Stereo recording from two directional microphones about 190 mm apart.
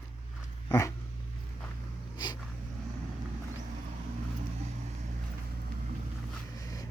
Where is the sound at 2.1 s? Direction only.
20° left (ahead or behind).